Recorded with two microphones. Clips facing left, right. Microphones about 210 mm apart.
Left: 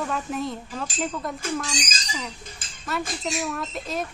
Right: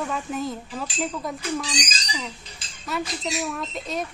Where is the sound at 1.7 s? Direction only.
50° left (ahead or behind).